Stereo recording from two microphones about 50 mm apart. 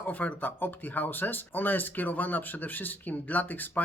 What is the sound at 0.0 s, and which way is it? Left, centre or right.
Speech, left.